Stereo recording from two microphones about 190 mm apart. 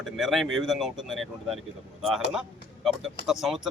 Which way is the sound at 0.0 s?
Centre (ahead or behind).